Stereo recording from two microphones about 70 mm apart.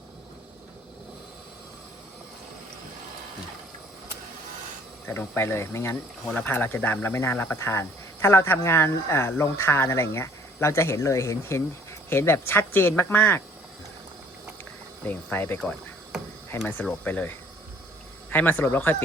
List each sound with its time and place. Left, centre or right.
5.0 s speech: left
6.4 s speech: left
7.3 s speech: left
7.6 s speech: left
15.0 s speech: left
16.8 s speech: left